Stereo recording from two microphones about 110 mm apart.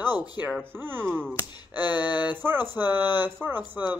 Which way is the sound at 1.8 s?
40° left (ahead or behind).